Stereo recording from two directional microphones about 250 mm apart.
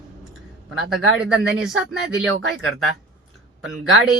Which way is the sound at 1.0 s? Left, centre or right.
Right.